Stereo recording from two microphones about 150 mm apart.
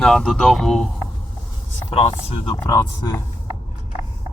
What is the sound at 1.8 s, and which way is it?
Speech, 40° left (ahead or behind).